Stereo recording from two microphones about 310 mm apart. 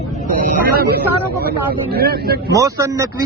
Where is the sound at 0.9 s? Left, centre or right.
Right.